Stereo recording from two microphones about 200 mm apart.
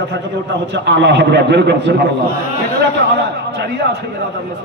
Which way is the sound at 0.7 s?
60° right (ahead or behind).